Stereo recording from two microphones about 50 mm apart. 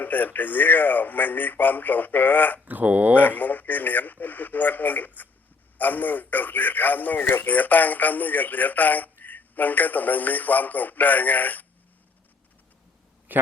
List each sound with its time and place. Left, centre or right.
0.0 s a man's voice: left
2.6 s speech: right
3.2 s a man's voice: left
13.3 s a sound: right